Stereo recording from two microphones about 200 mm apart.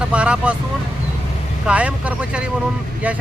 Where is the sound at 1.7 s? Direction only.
5° right (ahead or behind).